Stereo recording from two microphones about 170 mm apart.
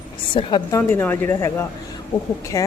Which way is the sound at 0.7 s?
10° left (ahead or behind).